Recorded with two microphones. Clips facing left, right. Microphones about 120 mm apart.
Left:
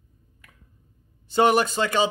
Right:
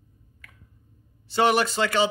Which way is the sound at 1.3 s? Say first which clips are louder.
Left 2 dB; 20° left (ahead or behind).